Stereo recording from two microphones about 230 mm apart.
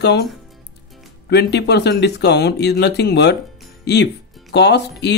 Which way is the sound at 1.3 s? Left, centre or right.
Left.